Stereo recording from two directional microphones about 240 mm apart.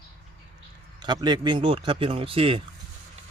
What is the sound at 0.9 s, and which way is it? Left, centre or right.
Speech, centre.